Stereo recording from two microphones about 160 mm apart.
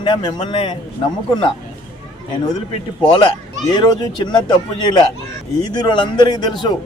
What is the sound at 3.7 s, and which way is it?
A man's voice, 25° left (ahead or behind).